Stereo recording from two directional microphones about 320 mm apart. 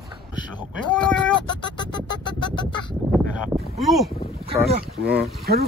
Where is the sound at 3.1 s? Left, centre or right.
Centre.